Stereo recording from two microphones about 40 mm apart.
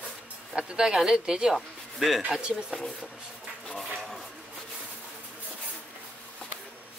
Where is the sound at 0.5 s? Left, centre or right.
Centre.